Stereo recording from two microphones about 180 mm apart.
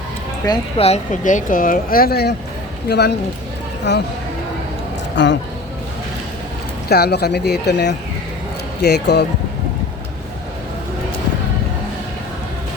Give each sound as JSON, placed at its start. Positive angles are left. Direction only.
{"t": 0.8, "sound": "speech", "side_deg": 35}
{"t": 5.1, "sound": "speech", "side_deg": 80}
{"t": 6.8, "sound": "speech", "side_deg": 60}